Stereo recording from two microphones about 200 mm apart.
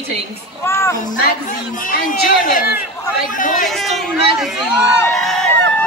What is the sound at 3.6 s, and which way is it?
Speech, centre (ahead or behind).